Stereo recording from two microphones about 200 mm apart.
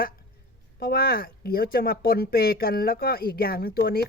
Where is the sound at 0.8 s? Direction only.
50° left (ahead or behind).